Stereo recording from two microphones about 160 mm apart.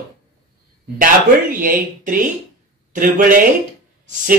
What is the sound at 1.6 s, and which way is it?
A man's voice, 60° right (ahead or behind).